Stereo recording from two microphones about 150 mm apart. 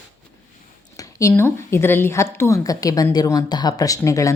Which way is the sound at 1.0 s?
20° left (ahead or behind).